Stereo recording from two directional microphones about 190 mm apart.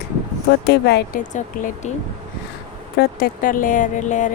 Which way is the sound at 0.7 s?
60° left (ahead or behind).